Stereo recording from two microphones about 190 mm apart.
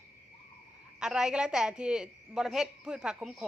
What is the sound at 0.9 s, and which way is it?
A woman's voice, 5° right (ahead or behind).